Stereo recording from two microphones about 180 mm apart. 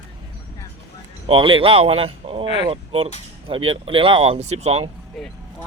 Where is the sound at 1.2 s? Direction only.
30° right (ahead or behind).